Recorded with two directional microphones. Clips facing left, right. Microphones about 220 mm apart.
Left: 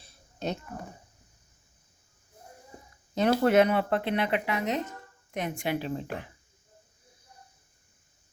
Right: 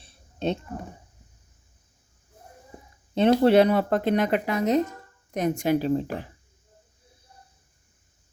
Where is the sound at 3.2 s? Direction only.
30° right (ahead or behind).